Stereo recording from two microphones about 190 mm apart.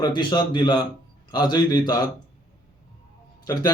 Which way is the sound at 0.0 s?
25° left (ahead or behind).